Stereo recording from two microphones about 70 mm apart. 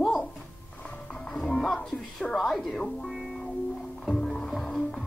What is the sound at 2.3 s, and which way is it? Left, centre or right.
Speech, centre.